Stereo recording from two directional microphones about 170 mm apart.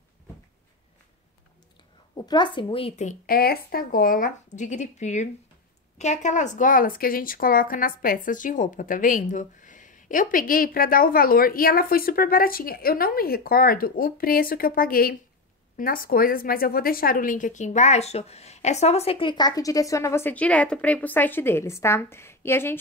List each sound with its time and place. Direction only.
2.1 s a woman's voice: 25° left (ahead or behind)